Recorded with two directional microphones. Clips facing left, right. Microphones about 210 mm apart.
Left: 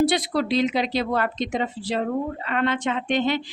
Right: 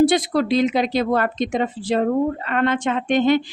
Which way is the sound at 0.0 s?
50° right (ahead or behind).